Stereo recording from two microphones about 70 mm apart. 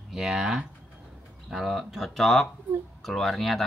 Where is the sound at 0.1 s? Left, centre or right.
Centre.